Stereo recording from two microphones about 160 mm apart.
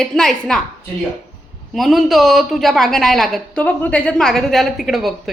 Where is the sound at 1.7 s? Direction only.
Centre (ahead or behind).